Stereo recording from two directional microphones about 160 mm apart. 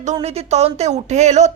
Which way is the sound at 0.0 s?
45° right (ahead or behind).